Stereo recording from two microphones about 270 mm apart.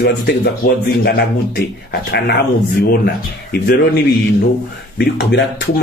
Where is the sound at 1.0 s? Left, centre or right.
Left.